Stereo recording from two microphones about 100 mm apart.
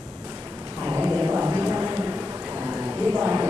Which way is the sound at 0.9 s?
25° right (ahead or behind).